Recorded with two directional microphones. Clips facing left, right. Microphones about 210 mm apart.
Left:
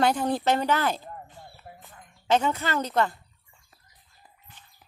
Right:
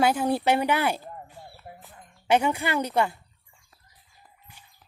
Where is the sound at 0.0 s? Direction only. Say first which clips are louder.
Right 1 dB; 5° right (ahead or behind).